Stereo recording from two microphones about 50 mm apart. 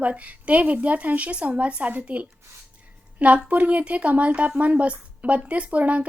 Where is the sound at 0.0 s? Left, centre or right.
Right.